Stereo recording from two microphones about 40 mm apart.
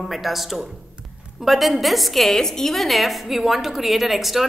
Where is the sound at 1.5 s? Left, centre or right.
Centre.